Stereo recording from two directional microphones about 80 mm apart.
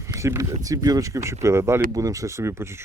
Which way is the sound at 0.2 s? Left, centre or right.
Right.